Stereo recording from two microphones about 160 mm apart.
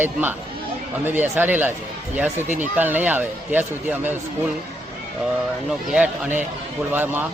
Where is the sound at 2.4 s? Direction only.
50° right (ahead or behind).